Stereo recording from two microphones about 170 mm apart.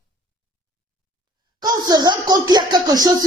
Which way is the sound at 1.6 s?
20° right (ahead or behind).